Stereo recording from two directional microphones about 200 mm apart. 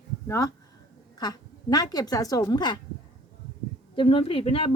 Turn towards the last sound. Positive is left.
turn(degrees=30)  # may be behind; listen again after turning